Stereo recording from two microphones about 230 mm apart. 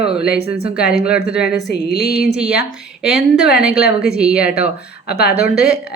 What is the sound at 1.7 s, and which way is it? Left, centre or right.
Music, left.